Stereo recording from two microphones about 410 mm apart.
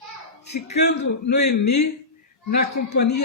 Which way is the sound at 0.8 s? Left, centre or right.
Left.